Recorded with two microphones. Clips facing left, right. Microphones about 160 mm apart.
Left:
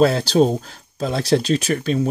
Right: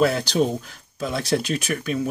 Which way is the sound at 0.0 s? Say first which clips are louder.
Left 5 dB; 30° left (ahead or behind).